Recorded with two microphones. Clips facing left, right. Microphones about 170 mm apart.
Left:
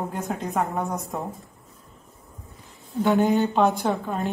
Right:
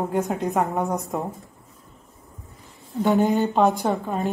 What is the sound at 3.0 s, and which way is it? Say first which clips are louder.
Speech: even; centre (ahead or behind).